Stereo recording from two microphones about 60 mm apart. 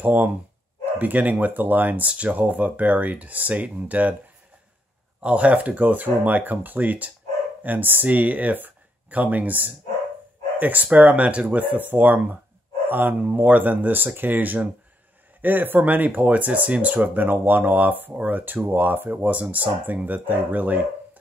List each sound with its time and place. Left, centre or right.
0.0 s speech: right
5.2 s speech: right